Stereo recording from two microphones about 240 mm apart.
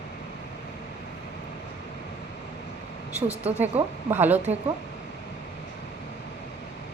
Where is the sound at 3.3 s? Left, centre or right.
Right.